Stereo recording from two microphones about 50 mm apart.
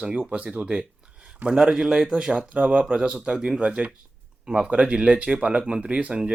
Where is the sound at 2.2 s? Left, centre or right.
Right.